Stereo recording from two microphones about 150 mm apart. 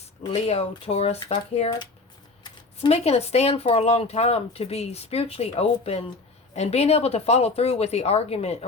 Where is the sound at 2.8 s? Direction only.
45° left (ahead or behind).